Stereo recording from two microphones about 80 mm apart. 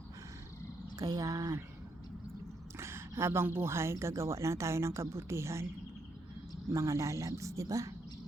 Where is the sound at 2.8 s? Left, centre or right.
Right.